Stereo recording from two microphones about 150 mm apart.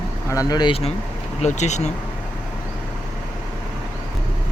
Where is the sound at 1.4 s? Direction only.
50° left (ahead or behind).